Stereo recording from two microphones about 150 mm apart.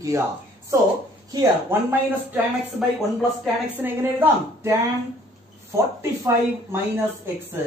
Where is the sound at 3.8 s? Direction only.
15° right (ahead or behind).